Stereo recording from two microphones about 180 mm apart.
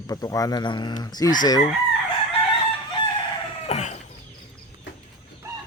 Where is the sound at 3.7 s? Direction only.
40° left (ahead or behind).